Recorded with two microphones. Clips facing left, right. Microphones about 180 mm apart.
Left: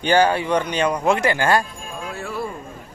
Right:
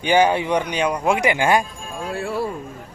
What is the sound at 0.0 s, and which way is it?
Speech, 15° right (ahead or behind).